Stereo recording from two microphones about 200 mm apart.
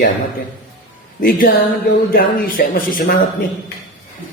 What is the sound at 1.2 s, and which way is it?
Speech, 45° left (ahead or behind).